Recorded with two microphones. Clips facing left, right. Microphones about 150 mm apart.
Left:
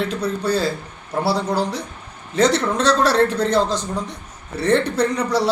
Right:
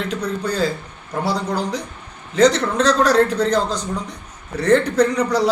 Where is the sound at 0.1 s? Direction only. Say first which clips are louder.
Left 2 dB; 10° left (ahead or behind).